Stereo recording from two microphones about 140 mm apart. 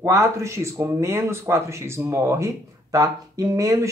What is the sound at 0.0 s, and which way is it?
A man's voice, 20° right (ahead or behind).